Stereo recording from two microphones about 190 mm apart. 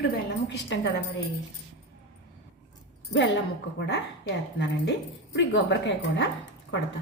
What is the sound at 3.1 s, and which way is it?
Speech, 70° left (ahead or behind).